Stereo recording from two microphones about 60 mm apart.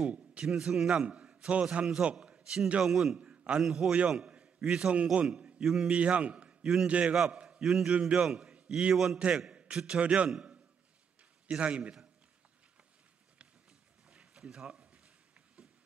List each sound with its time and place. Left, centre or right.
0.1 s a sound: centre
0.5 s a man's voice: centre
3.2 s a man's voice: centre
5.6 s a man's voice: centre
5.9 s a man's voice: right
7.6 s a man's voice: centre
8.9 s a man's voice: centre
9.5 s a sound: centre
9.8 s a man's voice: centre
11.4 s a man's voice: centre
14.1 s a sound: centre